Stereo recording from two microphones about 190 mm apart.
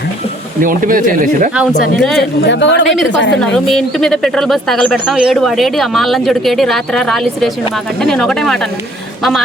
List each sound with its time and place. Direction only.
0.6 s speech: 45° right (ahead or behind)
2.4 s speech: 70° left (ahead or behind)
3.4 s speech: 5° left (ahead or behind)